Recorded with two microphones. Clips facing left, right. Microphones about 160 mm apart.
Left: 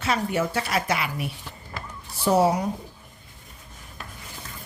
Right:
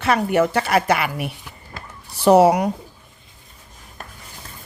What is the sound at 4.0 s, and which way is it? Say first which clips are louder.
Rub: right 3 dB; 45° right (ahead or behind).